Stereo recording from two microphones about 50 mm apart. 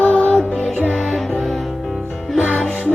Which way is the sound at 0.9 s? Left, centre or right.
Centre.